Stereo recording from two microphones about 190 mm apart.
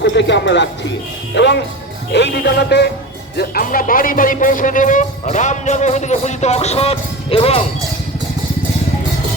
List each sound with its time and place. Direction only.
0.0 s speech: 65° left (ahead or behind)
1.4 s music: 65° left (ahead or behind)
3.3 s speech: 50° left (ahead or behind); by 7.6 s 30° left (ahead or behind)